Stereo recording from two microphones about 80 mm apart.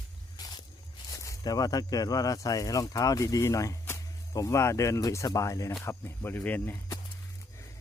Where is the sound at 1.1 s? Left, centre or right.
Left.